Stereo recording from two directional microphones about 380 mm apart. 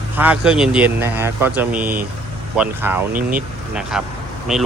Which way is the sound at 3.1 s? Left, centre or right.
Right.